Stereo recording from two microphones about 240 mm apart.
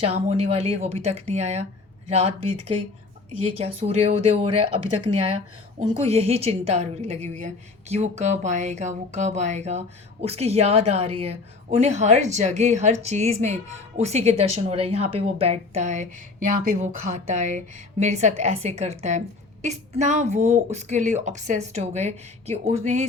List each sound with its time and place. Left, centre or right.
0.0 s a woman's voice: right
3.6 s a woman's voice: right